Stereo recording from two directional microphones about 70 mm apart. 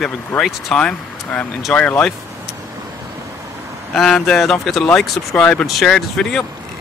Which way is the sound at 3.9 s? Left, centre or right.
Centre.